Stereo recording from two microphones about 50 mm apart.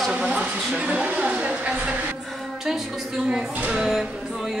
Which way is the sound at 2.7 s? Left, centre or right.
Centre.